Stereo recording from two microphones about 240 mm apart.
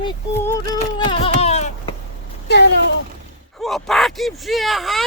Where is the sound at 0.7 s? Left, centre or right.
Centre.